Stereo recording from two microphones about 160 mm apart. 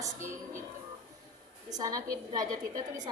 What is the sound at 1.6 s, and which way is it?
Speech, 25° right (ahead or behind).